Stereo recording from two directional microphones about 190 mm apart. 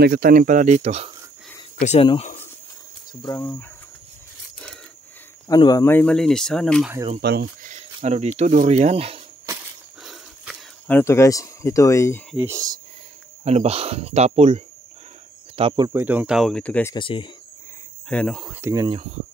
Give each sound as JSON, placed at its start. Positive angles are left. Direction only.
{"t": 0.0, "sound": "speech", "side_deg": -50}
{"t": 1.8, "sound": "speech", "side_deg": 35}
{"t": 3.2, "sound": "speech", "side_deg": 15}
{"t": 5.5, "sound": "speech", "side_deg": 20}
{"t": 7.2, "sound": "speech", "side_deg": -55}
{"t": 8.0, "sound": "speech", "side_deg": -35}
{"t": 10.0, "sound": "a sound", "side_deg": 0}
{"t": 10.9, "sound": "speech", "side_deg": 15}
{"t": 12.4, "sound": "speech", "side_deg": -15}
{"t": 13.4, "sound": "speech", "side_deg": -35}
{"t": 15.9, "sound": "speech", "side_deg": -10}
{"t": 16.9, "sound": "speech", "side_deg": 25}
{"t": 18.1, "sound": "speech", "side_deg": 5}
{"t": 18.5, "sound": "speech", "side_deg": -15}